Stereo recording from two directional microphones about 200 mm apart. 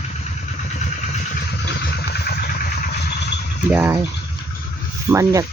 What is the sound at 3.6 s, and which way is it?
Speech, 10° right (ahead or behind).